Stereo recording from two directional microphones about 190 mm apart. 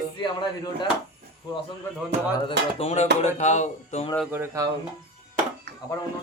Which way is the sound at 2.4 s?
35° left (ahead or behind).